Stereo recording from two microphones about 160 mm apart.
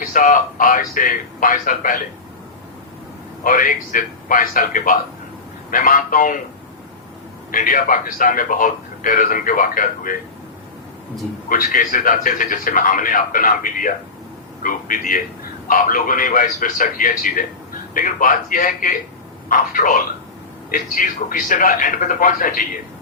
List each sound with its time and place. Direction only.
0.0 s a man's voice: 55° left (ahead or behind)
3.4 s a man's voice: 60° left (ahead or behind)
7.5 s a man's voice: 60° left (ahead or behind)
11.4 s a man's voice: 60° left (ahead or behind)